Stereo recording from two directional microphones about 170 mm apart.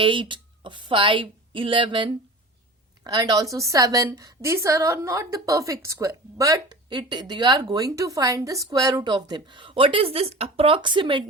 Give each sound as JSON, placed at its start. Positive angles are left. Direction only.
{"t": 0.0, "sound": "a woman's voice", "side_deg": -30}